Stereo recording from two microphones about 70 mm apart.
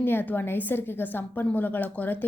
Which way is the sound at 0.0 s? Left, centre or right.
Left.